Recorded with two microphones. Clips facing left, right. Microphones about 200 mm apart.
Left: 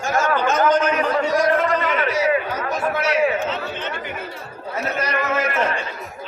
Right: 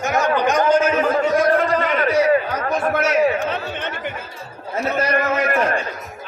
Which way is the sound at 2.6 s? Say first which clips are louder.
Right 2 dB; 50° right (ahead or behind).